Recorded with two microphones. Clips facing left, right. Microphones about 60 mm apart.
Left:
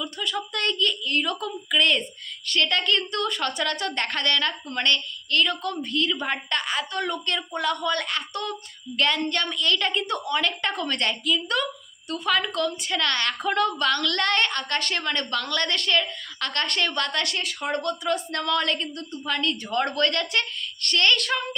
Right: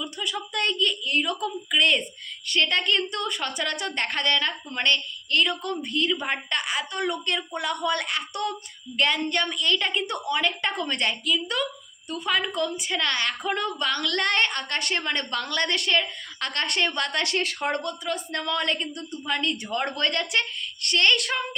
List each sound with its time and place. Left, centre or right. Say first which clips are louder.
0.0 s a woman's voice: left 2 dB; centre
17.3 s speech: right 2 dB; right
18.3 s a woman's voice: left 2 dB; centre